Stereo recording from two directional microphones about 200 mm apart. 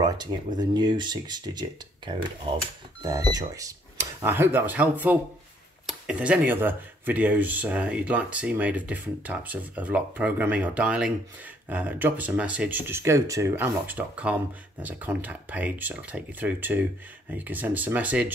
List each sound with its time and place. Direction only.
0.6 s speech: 20° right (ahead or behind)